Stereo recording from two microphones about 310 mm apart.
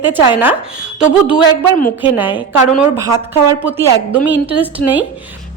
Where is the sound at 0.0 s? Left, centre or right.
Centre.